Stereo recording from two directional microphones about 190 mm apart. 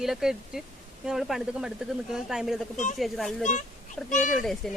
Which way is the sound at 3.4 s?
40° left (ahead or behind).